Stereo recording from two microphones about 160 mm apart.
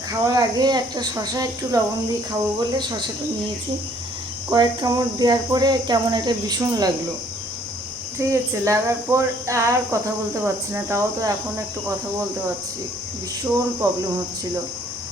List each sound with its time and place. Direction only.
0.3 s speech: 25° right (ahead or behind)
4.4 s speech: 25° right (ahead or behind)
8.3 s speech: 20° right (ahead or behind)
13.8 s speech: 20° right (ahead or behind)